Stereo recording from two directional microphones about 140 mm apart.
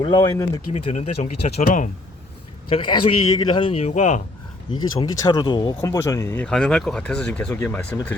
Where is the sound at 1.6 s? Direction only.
65° left (ahead or behind).